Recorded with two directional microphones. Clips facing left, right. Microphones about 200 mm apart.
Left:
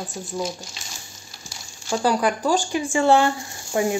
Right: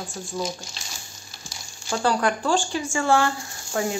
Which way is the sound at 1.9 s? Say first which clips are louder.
Left 2 dB; 10° left (ahead or behind).